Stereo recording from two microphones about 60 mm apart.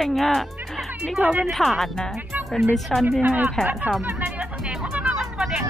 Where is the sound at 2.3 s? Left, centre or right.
Right.